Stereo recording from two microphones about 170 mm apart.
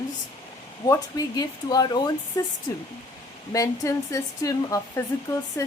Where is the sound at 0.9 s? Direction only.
20° left (ahead or behind).